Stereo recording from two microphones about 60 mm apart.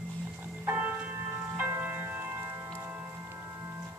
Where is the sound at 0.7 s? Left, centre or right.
Right.